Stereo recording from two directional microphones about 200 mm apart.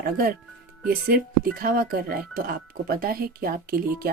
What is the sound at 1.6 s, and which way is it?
Speech, 45° right (ahead or behind).